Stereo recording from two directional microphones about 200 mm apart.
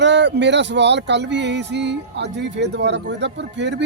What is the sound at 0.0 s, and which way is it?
Speech, 60° right (ahead or behind).